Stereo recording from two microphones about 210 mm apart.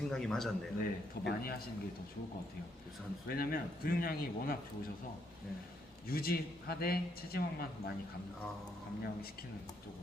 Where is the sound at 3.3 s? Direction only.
45° left (ahead or behind).